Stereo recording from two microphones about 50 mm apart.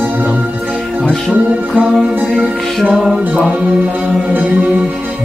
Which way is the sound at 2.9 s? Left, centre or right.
Centre.